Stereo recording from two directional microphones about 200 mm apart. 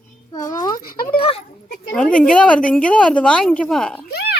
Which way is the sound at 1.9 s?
5° left (ahead or behind).